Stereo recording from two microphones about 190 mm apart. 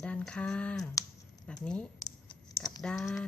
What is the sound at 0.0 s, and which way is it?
A woman's voice, 5° left (ahead or behind).